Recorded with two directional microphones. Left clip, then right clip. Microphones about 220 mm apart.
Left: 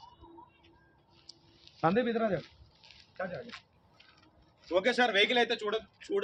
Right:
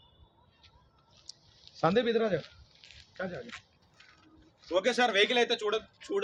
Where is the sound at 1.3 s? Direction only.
40° right (ahead or behind).